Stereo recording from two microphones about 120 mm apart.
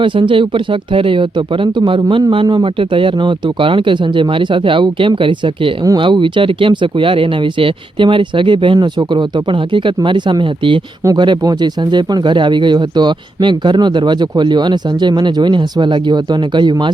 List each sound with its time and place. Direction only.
0.0 s speech: 45° right (ahead or behind)